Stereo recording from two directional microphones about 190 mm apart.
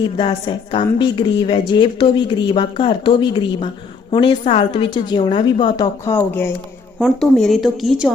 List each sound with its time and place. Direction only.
0.2 s a woman's voice: 25° left (ahead or behind)
7.0 s speech: centre (ahead or behind)